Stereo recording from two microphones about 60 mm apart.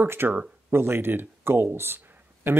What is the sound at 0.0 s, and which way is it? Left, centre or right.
Speech, right.